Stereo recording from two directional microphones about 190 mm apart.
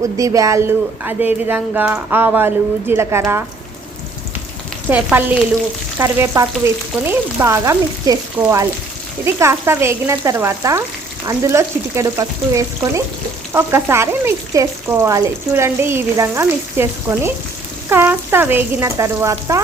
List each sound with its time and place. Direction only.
0.2 s frying: 15° right (ahead or behind)
4.9 s frying: 10° right (ahead or behind)